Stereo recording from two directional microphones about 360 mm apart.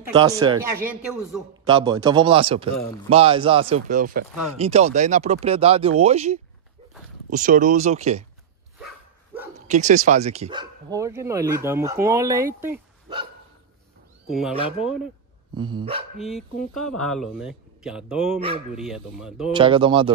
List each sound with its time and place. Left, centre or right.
0.1 s speech: centre
9.7 s speech: centre
15.5 s speech: centre
16.2 s speech: centre
19.5 s speech: centre